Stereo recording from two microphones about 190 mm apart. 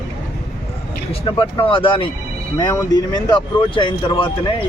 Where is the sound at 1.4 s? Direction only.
25° left (ahead or behind).